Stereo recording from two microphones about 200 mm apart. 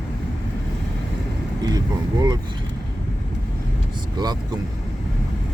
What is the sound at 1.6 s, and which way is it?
Vehicle, 20° right (ahead or behind).